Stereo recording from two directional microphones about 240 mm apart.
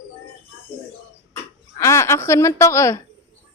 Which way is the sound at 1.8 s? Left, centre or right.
Centre.